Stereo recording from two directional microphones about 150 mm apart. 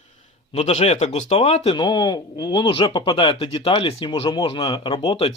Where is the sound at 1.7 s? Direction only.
30° left (ahead or behind).